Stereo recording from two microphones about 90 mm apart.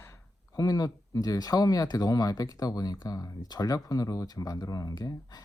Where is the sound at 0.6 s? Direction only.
40° left (ahead or behind).